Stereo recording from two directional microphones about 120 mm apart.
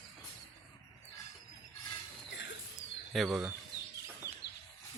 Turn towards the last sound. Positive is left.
turn(degrees=0)  # may be behind; listen again after turning